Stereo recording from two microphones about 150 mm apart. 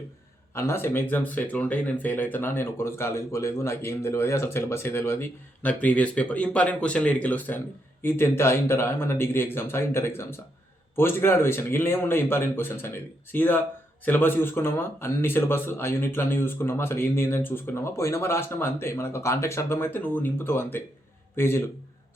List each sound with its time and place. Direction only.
0.5 s a man's voice: 15° left (ahead or behind)